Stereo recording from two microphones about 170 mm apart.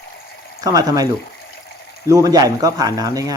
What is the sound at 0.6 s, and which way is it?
Speech, 20° right (ahead or behind).